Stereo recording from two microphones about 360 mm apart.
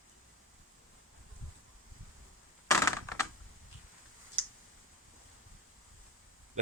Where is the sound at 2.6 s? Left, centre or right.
Centre.